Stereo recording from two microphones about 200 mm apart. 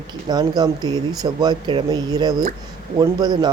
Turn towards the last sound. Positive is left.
turn(degrees=-20)  # may be behind; listen again after turning